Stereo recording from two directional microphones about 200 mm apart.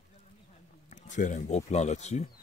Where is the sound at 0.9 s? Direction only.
40° left (ahead or behind).